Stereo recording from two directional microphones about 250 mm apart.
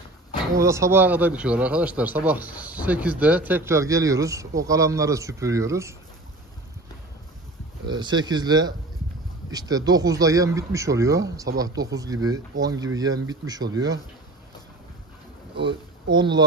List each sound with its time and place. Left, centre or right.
0.6 s speech: centre
7.8 s speech: centre
15.6 s speech: centre